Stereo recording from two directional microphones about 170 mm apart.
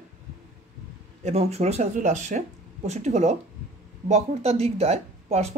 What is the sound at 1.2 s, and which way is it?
Speech, 40° right (ahead or behind).